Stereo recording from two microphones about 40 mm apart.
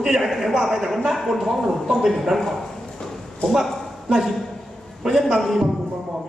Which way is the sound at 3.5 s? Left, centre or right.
Centre.